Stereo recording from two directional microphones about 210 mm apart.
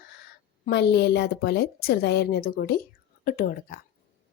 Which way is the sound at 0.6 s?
50° left (ahead or behind).